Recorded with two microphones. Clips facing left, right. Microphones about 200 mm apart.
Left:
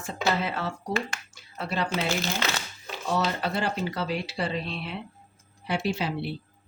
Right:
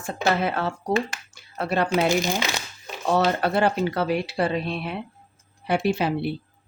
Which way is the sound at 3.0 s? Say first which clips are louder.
Right 6 dB; 55° right (ahead or behind).